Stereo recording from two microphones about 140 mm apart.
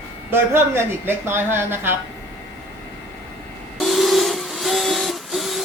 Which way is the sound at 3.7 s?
Centre (ahead or behind).